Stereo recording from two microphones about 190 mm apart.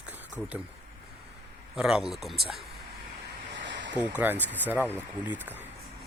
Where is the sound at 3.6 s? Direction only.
70° right (ahead or behind).